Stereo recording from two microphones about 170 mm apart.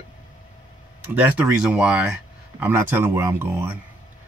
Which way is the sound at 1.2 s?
10° right (ahead or behind).